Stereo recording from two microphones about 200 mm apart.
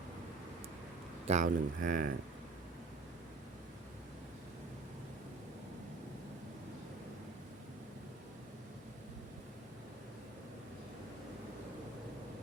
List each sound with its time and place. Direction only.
1.3 s speech: 40° right (ahead or behind)